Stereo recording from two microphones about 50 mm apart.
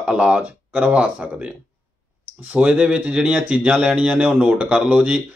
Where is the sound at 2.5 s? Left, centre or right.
Right.